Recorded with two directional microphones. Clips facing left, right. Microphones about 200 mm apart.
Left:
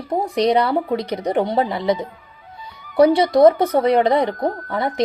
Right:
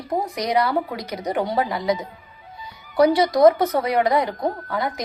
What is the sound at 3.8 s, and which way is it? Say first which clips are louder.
A woman's voice: left 5 dB; 25° left (ahead or behind).